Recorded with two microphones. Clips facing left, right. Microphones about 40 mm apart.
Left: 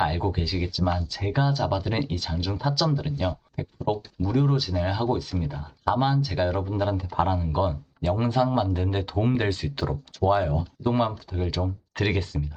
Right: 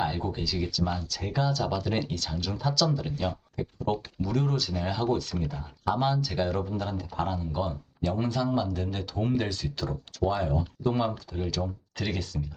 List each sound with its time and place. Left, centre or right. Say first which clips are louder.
0.0 s speech: left 4 dB; left
11.9 s speech: left 6 dB; left